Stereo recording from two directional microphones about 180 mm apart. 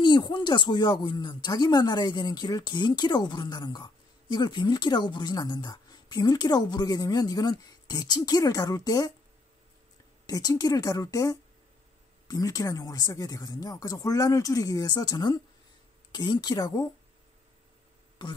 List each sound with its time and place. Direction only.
0.0 s speech: 25° left (ahead or behind)
10.2 s speech: 20° left (ahead or behind)